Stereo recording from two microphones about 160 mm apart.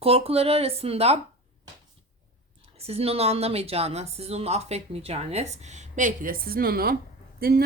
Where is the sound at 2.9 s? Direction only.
40° right (ahead or behind).